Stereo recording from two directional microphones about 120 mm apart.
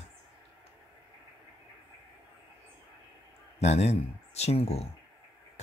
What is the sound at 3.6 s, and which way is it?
Speech, 65° left (ahead or behind).